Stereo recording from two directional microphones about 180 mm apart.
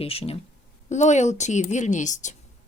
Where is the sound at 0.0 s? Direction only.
35° left (ahead or behind).